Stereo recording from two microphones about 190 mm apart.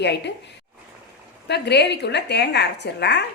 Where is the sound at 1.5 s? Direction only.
60° left (ahead or behind).